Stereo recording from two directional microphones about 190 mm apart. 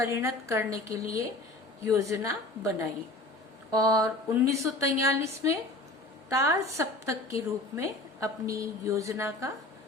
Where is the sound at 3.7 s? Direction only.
20° right (ahead or behind).